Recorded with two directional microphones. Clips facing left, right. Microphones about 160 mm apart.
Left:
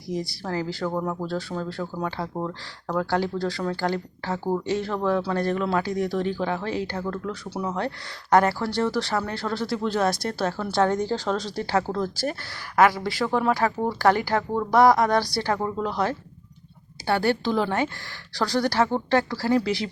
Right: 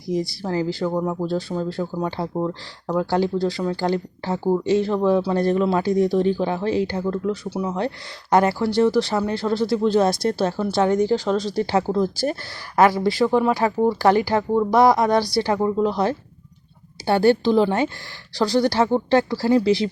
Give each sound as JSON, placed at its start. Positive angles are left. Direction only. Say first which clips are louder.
{"t": 0.1, "sound": "speech", "louder": "right 5 dB", "side_deg": -25}
{"t": 0.9, "sound": "speech", "louder": "right 4 dB", "side_deg": -10}